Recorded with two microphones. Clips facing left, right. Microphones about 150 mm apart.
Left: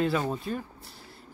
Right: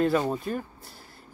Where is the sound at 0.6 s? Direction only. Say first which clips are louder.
Right 3 dB; centre (ahead or behind).